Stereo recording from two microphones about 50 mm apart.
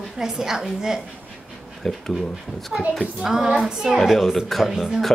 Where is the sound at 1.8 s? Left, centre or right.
Centre.